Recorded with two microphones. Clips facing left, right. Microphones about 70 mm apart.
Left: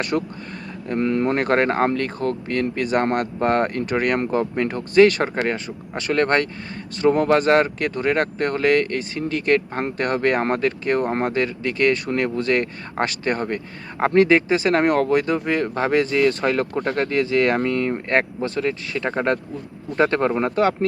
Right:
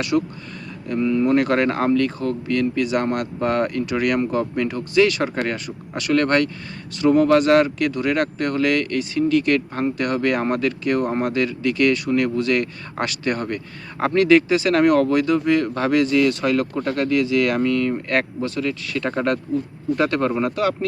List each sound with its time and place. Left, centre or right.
0.1 s speech: left
0.9 s speech: left
5.5 s speech: left